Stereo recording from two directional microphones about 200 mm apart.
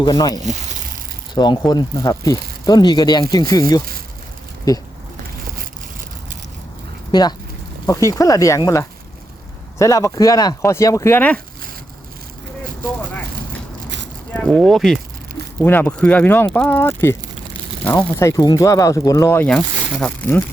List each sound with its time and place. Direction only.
0.0 s speech: 20° left (ahead or behind)
1.4 s speech: 20° left (ahead or behind)
7.1 s speech: 20° left (ahead or behind)
14.3 s speech: centre (ahead or behind)